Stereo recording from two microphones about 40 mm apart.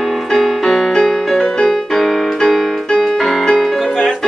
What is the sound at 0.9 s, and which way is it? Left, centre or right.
Music, centre.